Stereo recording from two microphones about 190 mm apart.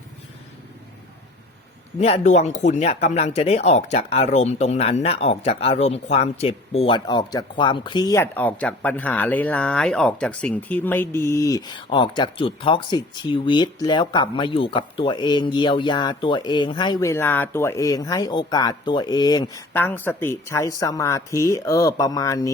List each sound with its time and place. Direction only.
2.0 s speech: 35° left (ahead or behind); by 22.5 s 20° left (ahead or behind)